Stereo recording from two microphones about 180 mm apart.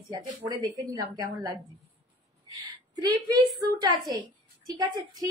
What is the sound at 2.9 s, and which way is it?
A woman's voice, 20° right (ahead or behind).